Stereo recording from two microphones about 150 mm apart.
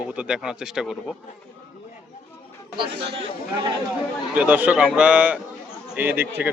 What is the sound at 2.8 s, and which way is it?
Speech, 90° right.